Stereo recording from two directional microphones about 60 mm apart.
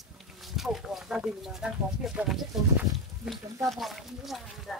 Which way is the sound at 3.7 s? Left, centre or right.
Centre.